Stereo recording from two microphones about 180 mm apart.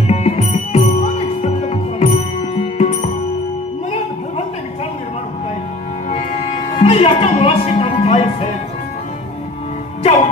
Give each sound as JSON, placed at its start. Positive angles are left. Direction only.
{"t": 0.1, "sound": "music", "side_deg": 35}
{"t": 6.8, "sound": "music", "side_deg": 35}